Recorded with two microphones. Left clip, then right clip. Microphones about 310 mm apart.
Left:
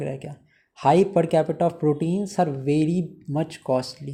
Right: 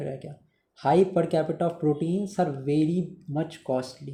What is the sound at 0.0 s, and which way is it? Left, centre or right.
Speech, left.